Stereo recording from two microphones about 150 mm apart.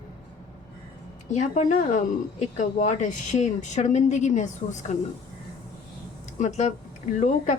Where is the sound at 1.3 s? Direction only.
50° left (ahead or behind).